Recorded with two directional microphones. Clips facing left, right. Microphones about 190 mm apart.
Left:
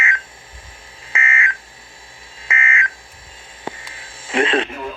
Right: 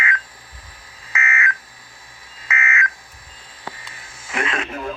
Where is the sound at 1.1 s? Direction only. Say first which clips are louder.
Even; 25° left (ahead or behind).